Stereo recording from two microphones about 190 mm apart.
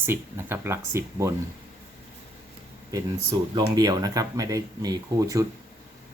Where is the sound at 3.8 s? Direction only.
20° right (ahead or behind).